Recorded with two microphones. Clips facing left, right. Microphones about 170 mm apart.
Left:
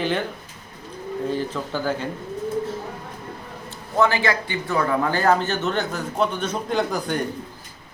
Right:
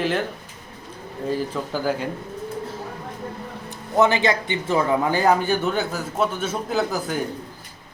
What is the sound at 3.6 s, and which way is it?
A man's voice, 20° right (ahead or behind).